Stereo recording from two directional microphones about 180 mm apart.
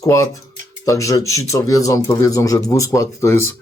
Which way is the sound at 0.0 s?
15° left (ahead or behind).